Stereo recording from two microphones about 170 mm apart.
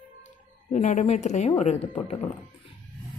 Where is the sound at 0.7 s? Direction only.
45° left (ahead or behind).